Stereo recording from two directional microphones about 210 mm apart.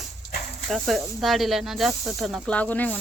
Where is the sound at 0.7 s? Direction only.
Centre (ahead or behind).